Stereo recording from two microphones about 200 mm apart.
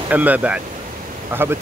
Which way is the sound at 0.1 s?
10° right (ahead or behind).